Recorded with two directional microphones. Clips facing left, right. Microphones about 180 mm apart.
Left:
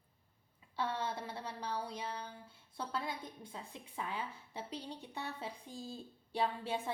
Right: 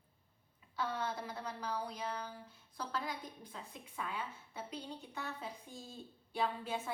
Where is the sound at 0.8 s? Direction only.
30° left (ahead or behind).